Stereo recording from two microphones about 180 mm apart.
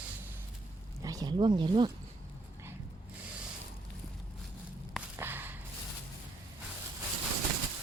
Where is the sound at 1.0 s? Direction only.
20° right (ahead or behind).